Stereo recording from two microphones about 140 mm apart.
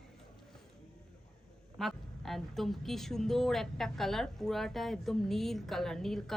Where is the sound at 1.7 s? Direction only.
Centre (ahead or behind).